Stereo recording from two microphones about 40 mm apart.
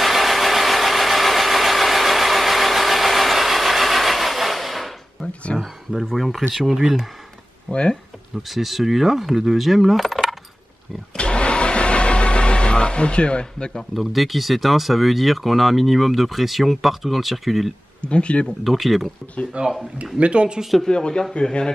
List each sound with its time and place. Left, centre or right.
0.0 s vehicle: centre
5.5 s a sound: left
6.1 s speech: centre
7.7 s speech: centre
8.4 s speech: centre
11.1 s vehicle: left
13.9 s speech: centre
18.0 s speech: left
18.6 s speech: centre
19.6 s speech: right
20.9 s speech: left